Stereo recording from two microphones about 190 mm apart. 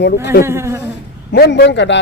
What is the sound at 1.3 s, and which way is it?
Speech, 60° left (ahead or behind).